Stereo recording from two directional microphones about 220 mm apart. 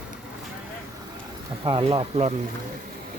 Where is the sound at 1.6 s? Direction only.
25° right (ahead or behind).